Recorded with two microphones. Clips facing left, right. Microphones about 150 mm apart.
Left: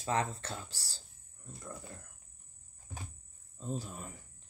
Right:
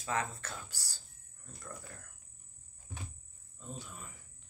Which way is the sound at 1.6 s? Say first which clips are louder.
Left 2 dB; 25° left (ahead or behind).